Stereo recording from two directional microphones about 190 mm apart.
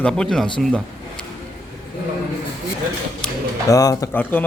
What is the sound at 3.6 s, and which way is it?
Speech, 20° left (ahead or behind).